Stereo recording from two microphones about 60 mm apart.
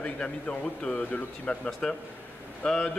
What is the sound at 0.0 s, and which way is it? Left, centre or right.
Speech, centre.